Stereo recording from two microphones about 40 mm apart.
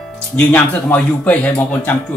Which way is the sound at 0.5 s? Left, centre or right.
Left.